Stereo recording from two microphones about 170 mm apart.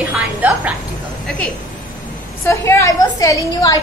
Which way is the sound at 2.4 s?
15° left (ahead or behind).